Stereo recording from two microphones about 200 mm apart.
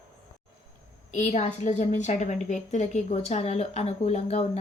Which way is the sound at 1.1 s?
35° left (ahead or behind).